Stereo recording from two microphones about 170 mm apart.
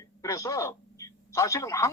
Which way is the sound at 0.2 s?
20° left (ahead or behind).